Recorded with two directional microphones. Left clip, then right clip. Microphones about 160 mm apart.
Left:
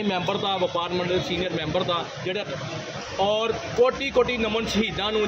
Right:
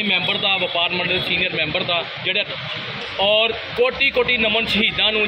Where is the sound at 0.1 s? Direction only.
20° left (ahead or behind).